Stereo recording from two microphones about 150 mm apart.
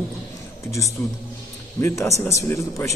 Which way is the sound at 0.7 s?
20° left (ahead or behind).